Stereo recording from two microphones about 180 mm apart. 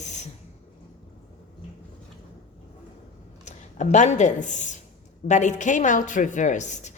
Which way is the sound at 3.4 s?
40° left (ahead or behind).